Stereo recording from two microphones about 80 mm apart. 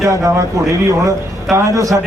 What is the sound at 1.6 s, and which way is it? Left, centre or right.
Speech, right.